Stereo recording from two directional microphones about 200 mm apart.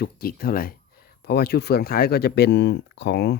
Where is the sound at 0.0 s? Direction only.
50° left (ahead or behind).